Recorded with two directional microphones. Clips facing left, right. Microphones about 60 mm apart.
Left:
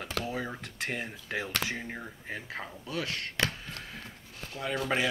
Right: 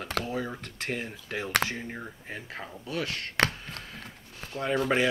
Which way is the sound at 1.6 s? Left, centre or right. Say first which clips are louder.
Right 3 dB; right.